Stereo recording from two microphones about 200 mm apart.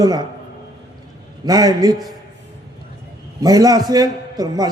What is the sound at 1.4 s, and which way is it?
Speech, 20° right (ahead or behind).